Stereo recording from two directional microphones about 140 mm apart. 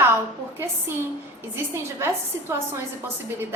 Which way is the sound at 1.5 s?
20° right (ahead or behind).